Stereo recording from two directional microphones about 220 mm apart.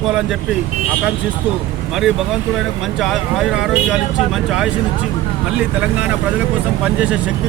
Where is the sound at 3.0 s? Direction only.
Centre (ahead or behind).